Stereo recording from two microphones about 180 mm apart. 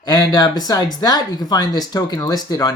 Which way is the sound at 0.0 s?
20° left (ahead or behind).